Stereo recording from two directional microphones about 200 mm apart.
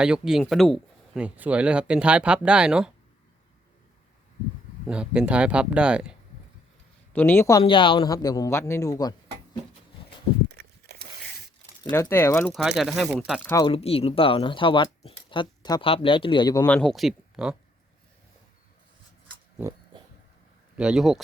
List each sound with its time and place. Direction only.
0.0 s speech: 5° right (ahead or behind)
4.9 s speech: 5° right (ahead or behind)
7.1 s speech: 10° left (ahead or behind)
7.6 s speech: 25° left (ahead or behind)
10.6 s a sound: 50° right (ahead or behind)
11.9 s speech: 10° left (ahead or behind)
12.5 s speech: centre (ahead or behind)
13.5 s speech: 20° left (ahead or behind)
13.7 s speech: 30° left (ahead or behind)
16.6 s speech: 5° left (ahead or behind)
20.7 s speech: 5° right (ahead or behind)